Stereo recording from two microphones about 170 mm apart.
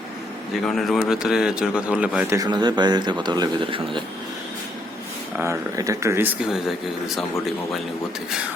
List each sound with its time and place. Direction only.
0.6 s a man's voice: centre (ahead or behind)
2.3 s speech: 25° right (ahead or behind)
5.4 s speech: 20° right (ahead or behind)
6.4 s a man's voice: 5° right (ahead or behind)